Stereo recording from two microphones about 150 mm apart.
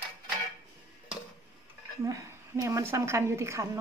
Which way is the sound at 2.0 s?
20° right (ahead or behind).